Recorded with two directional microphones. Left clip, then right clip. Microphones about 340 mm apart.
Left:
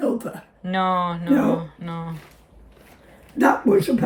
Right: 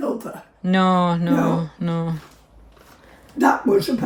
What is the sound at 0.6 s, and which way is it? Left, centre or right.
Speech, centre.